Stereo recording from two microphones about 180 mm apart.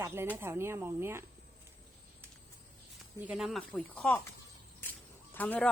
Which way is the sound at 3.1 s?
5° right (ahead or behind).